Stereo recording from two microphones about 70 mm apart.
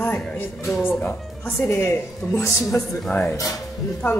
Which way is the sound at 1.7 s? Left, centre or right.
Left.